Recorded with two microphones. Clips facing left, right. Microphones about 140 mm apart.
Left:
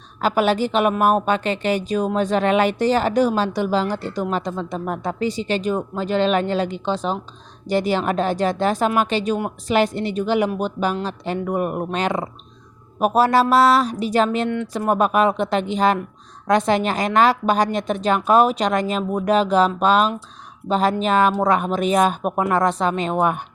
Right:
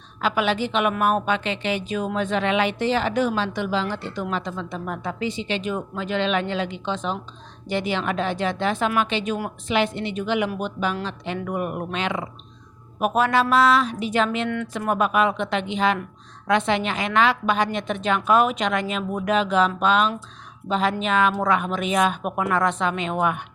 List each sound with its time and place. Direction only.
0.2 s a woman's voice: 40° left (ahead or behind)